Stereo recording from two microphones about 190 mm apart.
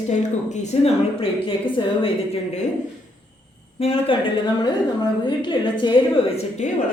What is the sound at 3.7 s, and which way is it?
Speech, 30° left (ahead or behind).